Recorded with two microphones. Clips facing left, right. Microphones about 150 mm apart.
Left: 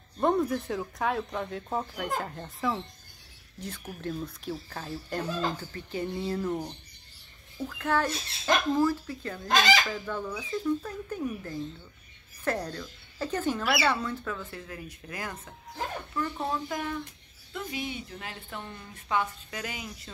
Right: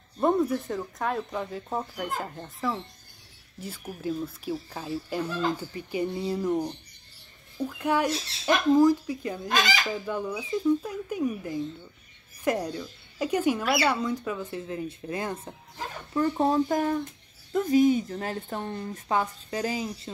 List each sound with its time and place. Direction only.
0.2 s speech: centre (ahead or behind); by 15.5 s 25° right (ahead or behind)
16.1 s a woman's voice: 40° right (ahead or behind)